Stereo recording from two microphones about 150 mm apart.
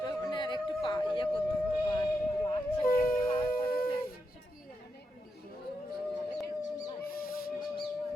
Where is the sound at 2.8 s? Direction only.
75° left (ahead or behind).